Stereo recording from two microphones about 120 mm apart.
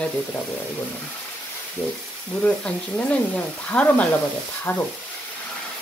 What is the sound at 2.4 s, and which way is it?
Speech, 10° left (ahead or behind).